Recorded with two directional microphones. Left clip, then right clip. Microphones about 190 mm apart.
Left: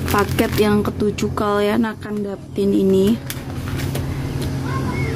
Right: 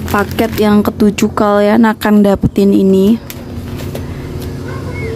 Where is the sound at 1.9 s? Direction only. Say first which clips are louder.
Right 15 dB; 50° right (ahead or behind).